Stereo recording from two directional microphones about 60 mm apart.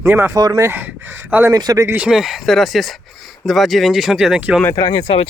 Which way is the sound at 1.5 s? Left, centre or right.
Right.